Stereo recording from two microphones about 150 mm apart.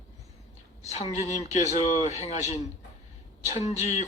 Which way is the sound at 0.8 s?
50° left (ahead or behind).